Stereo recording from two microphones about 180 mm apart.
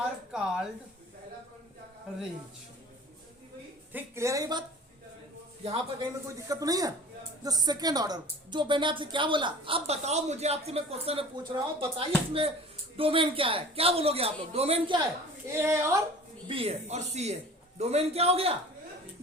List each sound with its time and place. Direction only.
0.3 s a sound: 5° right (ahead or behind)
3.9 s a woman's voice: 15° right (ahead or behind)
5.6 s a woman's voice: 35° right (ahead or behind)
6.2 s a woman's voice: 20° right (ahead or behind)
15.5 s a woman's voice: 15° right (ahead or behind)
16.5 s a woman's voice: 35° right (ahead or behind)